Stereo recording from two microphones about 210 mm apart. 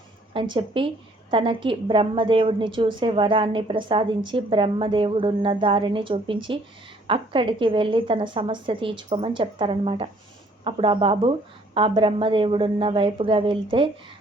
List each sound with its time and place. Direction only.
0.3 s a woman's voice: 25° right (ahead or behind)